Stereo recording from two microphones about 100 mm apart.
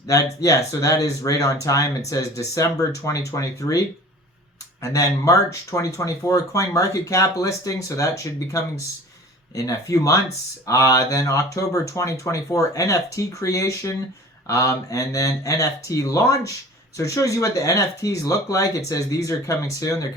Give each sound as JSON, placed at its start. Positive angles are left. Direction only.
{"t": 0.1, "sound": "speech", "side_deg": 35}